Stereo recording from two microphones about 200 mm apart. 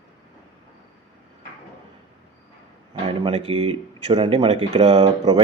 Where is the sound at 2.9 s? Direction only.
30° right (ahead or behind).